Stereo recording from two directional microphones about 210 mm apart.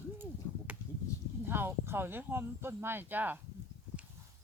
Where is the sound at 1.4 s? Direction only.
10° right (ahead or behind).